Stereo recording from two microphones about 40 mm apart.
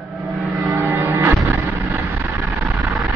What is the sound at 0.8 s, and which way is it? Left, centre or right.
Music, right.